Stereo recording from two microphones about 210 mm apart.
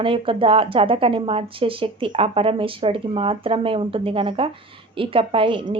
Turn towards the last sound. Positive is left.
turn(degrees=-25)  # may be behind; listen again after turning